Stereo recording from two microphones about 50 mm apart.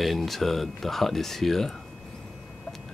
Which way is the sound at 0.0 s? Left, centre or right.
Centre.